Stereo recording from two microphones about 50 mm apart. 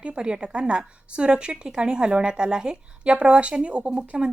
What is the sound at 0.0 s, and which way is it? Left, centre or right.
A woman's voice, right.